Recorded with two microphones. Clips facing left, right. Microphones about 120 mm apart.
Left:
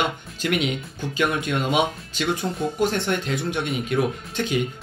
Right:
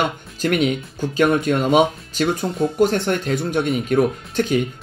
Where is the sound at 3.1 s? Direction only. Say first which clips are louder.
Right 4 dB; 45° right (ahead or behind).